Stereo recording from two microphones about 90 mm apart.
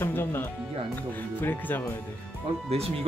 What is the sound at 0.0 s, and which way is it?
Music, 25° left (ahead or behind).